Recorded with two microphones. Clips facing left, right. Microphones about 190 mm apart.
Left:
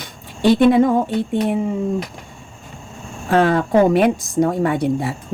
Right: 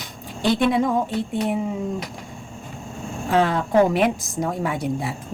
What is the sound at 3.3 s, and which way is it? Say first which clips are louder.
Speech: left 4 dB; 70° left (ahead or behind).